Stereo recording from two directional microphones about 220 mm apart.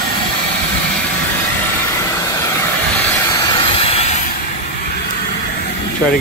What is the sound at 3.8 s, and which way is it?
Train, 30° left (ahead or behind).